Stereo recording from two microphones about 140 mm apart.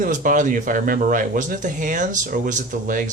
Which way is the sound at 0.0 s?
75° right (ahead or behind).